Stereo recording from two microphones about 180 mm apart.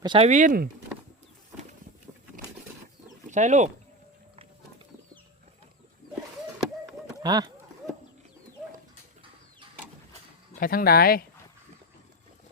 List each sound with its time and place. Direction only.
0.0 s speech: 25° right (ahead or behind)
0.3 s speech: 45° right (ahead or behind)
3.2 s speech: 40° right (ahead or behind)
7.1 s speech: 20° right (ahead or behind)
10.5 s speech: 55° left (ahead or behind)